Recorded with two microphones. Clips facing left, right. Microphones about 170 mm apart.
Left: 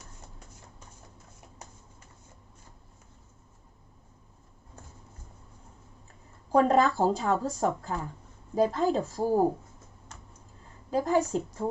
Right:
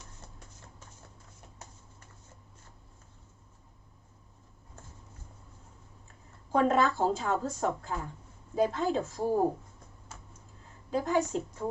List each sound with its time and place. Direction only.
6.5 s a woman's voice: 40° left (ahead or behind)
10.1 s a sound: 5° right (ahead or behind)
10.9 s a woman's voice: 40° left (ahead or behind)